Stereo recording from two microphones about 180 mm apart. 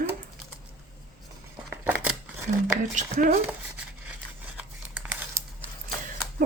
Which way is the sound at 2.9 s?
45° right (ahead or behind).